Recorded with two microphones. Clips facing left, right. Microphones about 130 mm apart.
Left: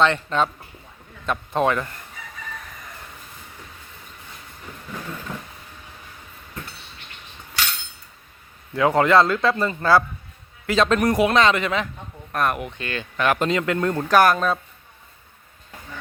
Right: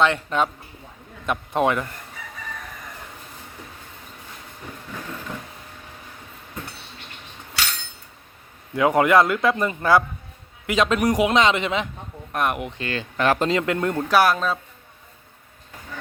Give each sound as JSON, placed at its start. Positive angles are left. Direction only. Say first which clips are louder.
{"t": 0.0, "sound": "a man's voice", "louder": "left 1 dB", "side_deg": -10}
{"t": 8.7, "sound": "a man's voice", "louder": "even", "side_deg": -20}
{"t": 14.1, "sound": "speech", "louder": "left 2 dB", "side_deg": -5}